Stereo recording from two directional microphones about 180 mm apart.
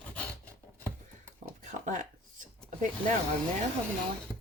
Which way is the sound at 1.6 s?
45° right (ahead or behind).